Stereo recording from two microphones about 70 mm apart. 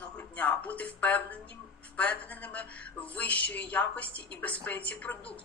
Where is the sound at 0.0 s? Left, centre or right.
Left.